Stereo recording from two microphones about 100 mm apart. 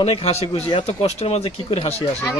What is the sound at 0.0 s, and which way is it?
A man's voice, 85° left.